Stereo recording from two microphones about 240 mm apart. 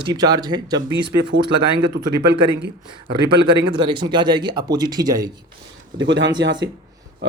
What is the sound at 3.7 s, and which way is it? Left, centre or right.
Speech, centre.